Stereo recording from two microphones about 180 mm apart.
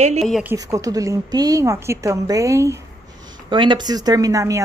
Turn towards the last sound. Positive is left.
turn(degrees=-20)  # may be behind; listen again after turning